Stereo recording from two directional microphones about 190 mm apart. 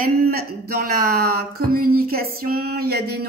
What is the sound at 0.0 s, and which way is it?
Speech, 50° right (ahead or behind).